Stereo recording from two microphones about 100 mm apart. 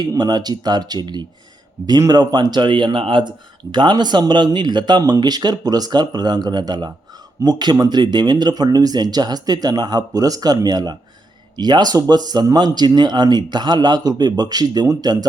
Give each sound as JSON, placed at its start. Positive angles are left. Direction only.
{"t": 0.1, "sound": "speech", "side_deg": -45}